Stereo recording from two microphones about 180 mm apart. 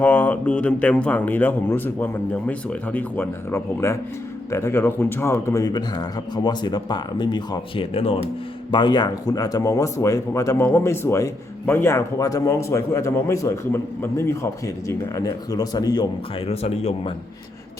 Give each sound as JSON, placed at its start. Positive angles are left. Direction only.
{"t": 0.0, "sound": "speech", "side_deg": 10}
{"t": 16.5, "sound": "speech", "side_deg": 35}